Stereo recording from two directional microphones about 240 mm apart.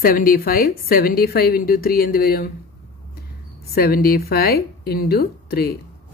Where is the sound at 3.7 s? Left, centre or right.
Left.